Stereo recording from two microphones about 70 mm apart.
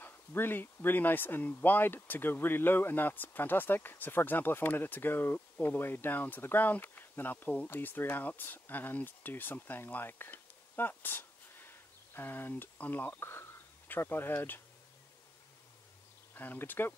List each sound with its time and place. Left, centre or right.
0.0 s speech: left
16.3 s speech: left